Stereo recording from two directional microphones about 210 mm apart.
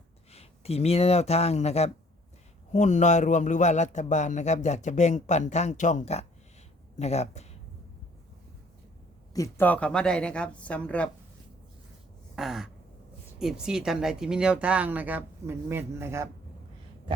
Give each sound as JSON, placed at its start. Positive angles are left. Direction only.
{"t": 0.3, "sound": "a man's voice", "side_deg": 30}
{"t": 9.3, "sound": "speech", "side_deg": 15}
{"t": 12.4, "sound": "speech", "side_deg": 0}